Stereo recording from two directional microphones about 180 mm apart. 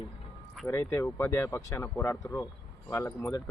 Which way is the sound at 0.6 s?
15° left (ahead or behind).